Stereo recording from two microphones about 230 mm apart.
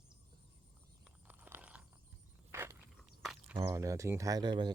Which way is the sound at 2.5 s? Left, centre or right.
Centre.